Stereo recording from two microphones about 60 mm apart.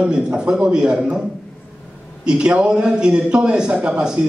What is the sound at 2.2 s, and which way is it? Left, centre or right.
A man's voice, centre.